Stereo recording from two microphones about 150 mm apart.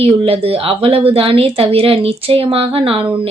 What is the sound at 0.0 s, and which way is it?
A woman's voice, 40° right (ahead or behind).